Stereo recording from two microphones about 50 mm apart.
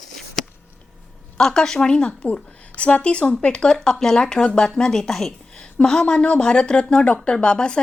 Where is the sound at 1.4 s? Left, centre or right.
Centre.